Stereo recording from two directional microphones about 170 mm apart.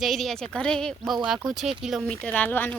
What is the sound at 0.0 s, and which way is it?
Speech, centre (ahead or behind).